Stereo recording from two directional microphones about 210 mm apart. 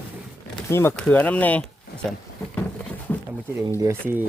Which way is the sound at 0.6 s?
10° left (ahead or behind).